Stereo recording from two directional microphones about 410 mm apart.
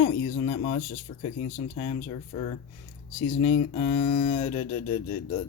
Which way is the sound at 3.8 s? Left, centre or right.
Centre.